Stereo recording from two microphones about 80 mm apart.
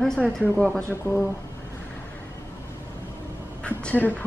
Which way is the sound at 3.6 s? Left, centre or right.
Centre.